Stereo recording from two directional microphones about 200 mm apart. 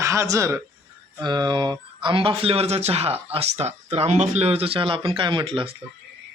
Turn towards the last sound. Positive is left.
turn(degrees=-25)  # may be behind; listen again after turning